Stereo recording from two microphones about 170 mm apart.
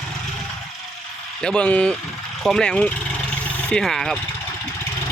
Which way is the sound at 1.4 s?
5° left (ahead or behind).